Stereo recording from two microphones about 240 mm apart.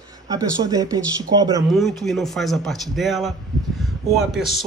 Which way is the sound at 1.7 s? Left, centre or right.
Centre.